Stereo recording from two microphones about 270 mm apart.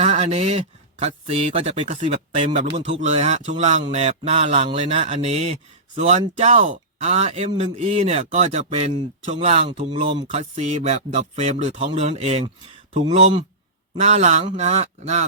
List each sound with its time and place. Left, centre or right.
0.0 s speech: right